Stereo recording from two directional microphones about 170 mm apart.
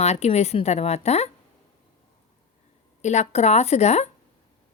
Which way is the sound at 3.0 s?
40° left (ahead or behind).